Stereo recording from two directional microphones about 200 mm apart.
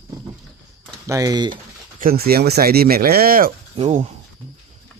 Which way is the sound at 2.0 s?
50° right (ahead or behind).